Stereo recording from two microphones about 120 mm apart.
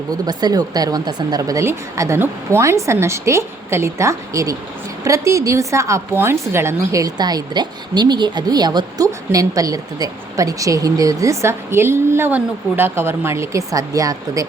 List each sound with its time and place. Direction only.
0.1 s a woman's voice: 35° right (ahead or behind)